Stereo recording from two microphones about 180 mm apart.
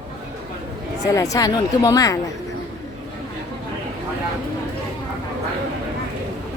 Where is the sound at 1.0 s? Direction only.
20° left (ahead or behind).